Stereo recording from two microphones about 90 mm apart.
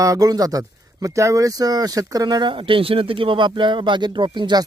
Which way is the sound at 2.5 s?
80° right.